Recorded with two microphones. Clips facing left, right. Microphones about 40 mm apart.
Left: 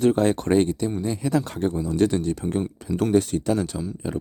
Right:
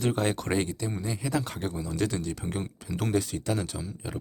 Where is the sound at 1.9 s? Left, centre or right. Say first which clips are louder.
Left 8 dB; left.